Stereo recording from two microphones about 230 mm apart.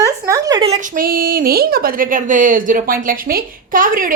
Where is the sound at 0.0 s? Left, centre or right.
Centre.